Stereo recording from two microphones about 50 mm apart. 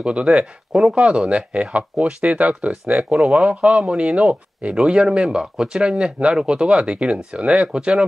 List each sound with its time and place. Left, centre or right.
0.0 s speech: centre